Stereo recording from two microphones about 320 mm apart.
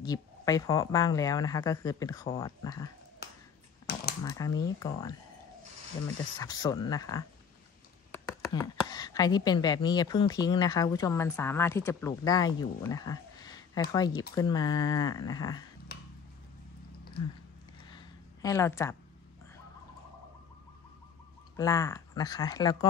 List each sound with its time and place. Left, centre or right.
0.0 s speech: centre
3.2 s finger snapping: left
3.9 s typewriter: left
4.2 s speech: centre
6.4 s speech: centre
15.9 s a sound: left
17.9 s a sound: centre
21.5 s speech: centre